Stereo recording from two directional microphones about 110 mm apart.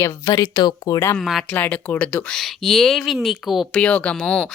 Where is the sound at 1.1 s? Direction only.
Centre (ahead or behind).